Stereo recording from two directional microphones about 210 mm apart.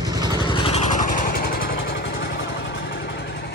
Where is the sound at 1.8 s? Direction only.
60° left (ahead or behind).